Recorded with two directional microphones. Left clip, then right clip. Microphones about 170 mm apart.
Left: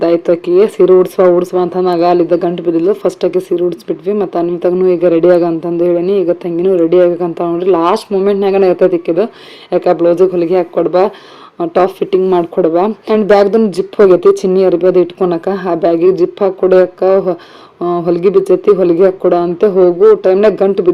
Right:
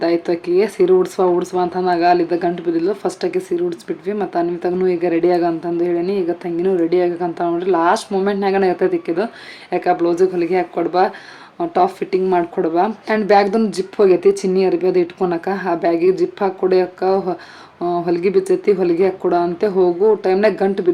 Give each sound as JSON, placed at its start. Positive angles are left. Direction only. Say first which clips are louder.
{"t": 0.0, "sound": "speech", "louder": "left 7 dB", "side_deg": 15}